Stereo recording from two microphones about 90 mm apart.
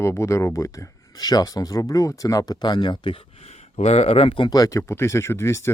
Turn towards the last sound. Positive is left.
turn(degrees=30)  # may be behind; listen again after turning